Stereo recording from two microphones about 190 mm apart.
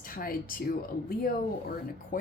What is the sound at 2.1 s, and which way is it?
Speech, 50° left (ahead or behind).